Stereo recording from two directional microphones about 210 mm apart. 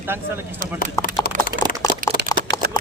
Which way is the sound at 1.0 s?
45° left (ahead or behind).